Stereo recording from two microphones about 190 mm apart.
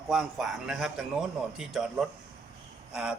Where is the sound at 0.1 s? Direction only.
Centre (ahead or behind).